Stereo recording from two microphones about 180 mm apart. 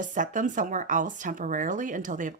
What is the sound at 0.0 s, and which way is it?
Speech, 45° right (ahead or behind).